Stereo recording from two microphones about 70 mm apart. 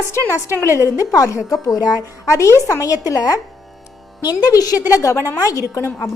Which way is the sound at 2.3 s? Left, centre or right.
Left.